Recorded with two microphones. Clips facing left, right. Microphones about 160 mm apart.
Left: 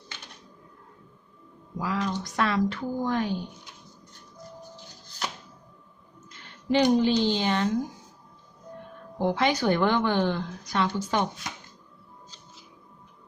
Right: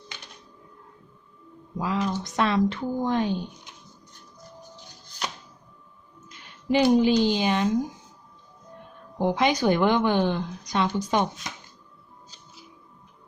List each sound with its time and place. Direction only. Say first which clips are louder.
1.8 s a woman's voice: right 2 dB; 25° right (ahead or behind)
6.3 s speech: right 1 dB; 15° right (ahead or behind)
9.1 s a woman's voice: right 2 dB; 15° right (ahead or behind)